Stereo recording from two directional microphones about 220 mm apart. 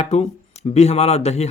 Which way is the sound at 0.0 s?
30° left (ahead or behind).